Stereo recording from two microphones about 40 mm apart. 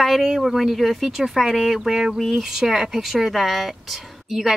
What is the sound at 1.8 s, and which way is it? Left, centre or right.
Speech, centre.